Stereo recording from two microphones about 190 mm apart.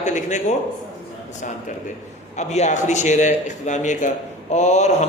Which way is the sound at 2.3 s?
35° left (ahead or behind).